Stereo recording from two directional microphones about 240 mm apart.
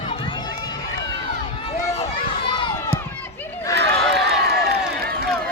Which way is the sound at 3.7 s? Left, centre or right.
Right.